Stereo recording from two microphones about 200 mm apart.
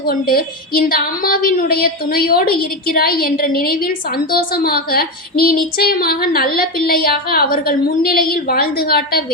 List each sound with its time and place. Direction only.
0.0 s a woman's voice: 50° left (ahead or behind)